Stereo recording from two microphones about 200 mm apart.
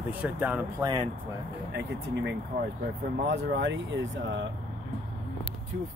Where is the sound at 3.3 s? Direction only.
65° right (ahead or behind).